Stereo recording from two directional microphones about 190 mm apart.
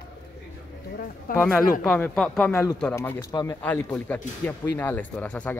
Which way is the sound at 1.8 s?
5° left (ahead or behind).